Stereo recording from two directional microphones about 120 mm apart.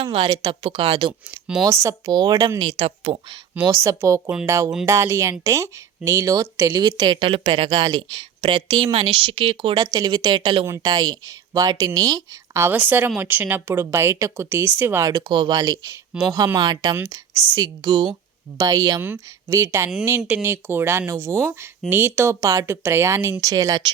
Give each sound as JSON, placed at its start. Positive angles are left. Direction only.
{"t": 0.0, "sound": "speech", "side_deg": -50}
{"t": 1.6, "sound": "speech", "side_deg": -25}
{"t": 2.0, "sound": "speech", "side_deg": -35}
{"t": 2.6, "sound": "speech", "side_deg": -50}
{"t": 3.7, "sound": "speech", "side_deg": -25}
{"t": 7.2, "sound": "speech", "side_deg": -50}
{"t": 15.2, "sound": "speech", "side_deg": -40}
{"t": 16.9, "sound": "speech", "side_deg": -20}
{"t": 18.9, "sound": "speech", "side_deg": -15}